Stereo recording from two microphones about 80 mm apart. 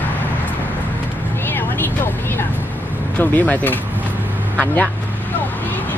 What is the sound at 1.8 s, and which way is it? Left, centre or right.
Speech, left.